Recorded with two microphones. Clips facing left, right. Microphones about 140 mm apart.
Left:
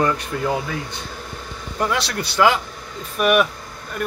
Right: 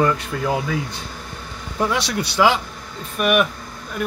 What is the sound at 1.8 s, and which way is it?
Speech, 5° right (ahead or behind).